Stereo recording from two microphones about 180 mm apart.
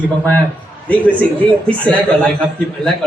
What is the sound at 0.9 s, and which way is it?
A woman's voice, 10° left (ahead or behind).